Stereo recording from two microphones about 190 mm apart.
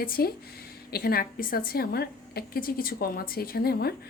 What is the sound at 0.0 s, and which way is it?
A woman's voice, 50° left (ahead or behind).